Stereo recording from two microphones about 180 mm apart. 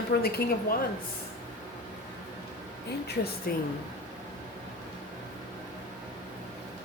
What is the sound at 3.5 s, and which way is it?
Speech, 55° left (ahead or behind).